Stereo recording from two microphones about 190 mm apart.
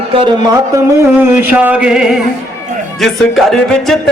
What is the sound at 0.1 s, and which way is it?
Speech, 25° right (ahead or behind).